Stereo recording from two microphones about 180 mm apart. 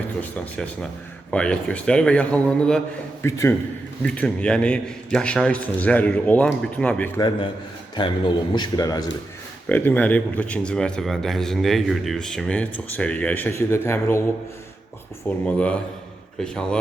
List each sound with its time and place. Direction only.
0.2 s a man's voice: 5° left (ahead or behind)
3.2 s a man's voice: 15° left (ahead or behind)
7.2 s speech: 25° left (ahead or behind)
9.6 s speech: 10° left (ahead or behind)
15.3 s a man's voice: 5° left (ahead or behind)